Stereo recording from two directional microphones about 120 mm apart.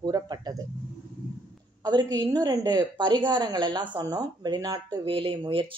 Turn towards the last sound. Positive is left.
turn(degrees=-45)  # may be behind; listen again after turning